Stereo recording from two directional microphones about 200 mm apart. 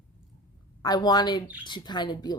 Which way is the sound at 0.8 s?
20° left (ahead or behind).